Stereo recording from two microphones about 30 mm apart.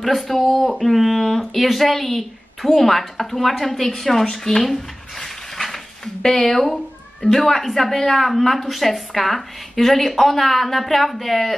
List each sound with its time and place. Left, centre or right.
0.0 s a woman's voice: centre
0.5 s speech: right
0.7 s a woman's voice: centre